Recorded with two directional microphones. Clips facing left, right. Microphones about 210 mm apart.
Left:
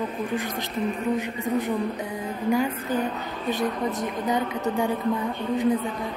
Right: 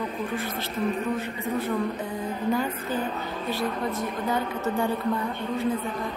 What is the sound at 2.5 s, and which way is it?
A woman's voice, 10° left (ahead or behind).